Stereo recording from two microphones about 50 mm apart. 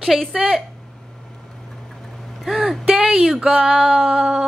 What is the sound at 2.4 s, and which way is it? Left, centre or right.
Vehicle, centre.